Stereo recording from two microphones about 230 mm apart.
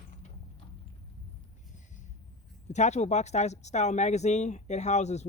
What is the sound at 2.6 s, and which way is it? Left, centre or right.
Speech, left.